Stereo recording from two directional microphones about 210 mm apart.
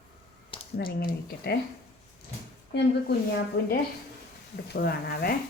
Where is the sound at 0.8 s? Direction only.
45° left (ahead or behind).